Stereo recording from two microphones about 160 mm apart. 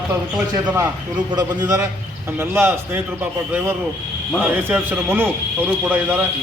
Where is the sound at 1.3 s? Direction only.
25° right (ahead or behind).